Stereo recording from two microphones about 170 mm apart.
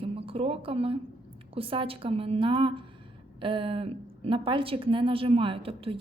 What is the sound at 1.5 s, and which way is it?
A woman's voice, 30° right (ahead or behind).